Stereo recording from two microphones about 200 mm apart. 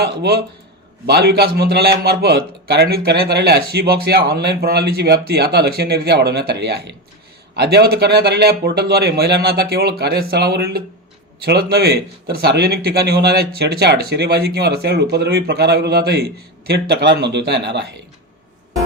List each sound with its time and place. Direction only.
0.0 s speech: 55° right (ahead or behind)